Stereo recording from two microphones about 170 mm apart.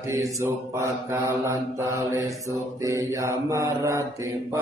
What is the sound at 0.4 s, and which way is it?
Mantra, 15° right (ahead or behind).